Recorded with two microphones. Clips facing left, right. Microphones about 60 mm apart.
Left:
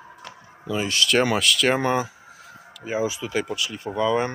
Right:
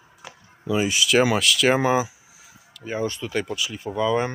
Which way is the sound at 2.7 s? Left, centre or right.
Centre.